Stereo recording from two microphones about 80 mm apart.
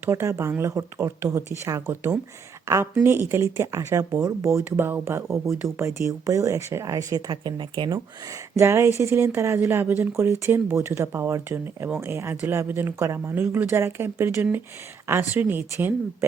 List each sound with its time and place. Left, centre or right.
0.0 s speech: right
5.3 s speech: centre
5.7 s speech: right
6.8 s speech: right
7.9 s speech: right